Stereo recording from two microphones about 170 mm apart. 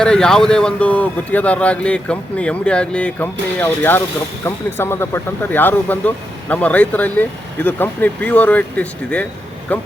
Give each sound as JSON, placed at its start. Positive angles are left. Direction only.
{"t": 0.0, "sound": "speech", "side_deg": 5}